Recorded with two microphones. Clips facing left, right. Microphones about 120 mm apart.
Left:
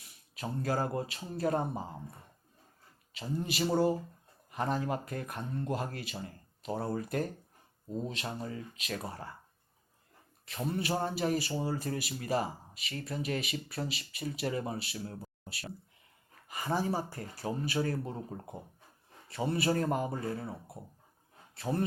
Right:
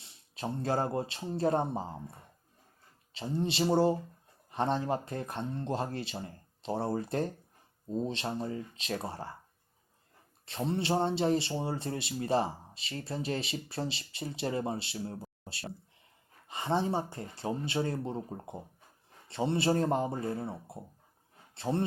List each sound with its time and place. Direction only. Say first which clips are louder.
0.0 s speech: right 3 dB; 25° right (ahead or behind)
10.4 s speech: right 2 dB; 25° right (ahead or behind)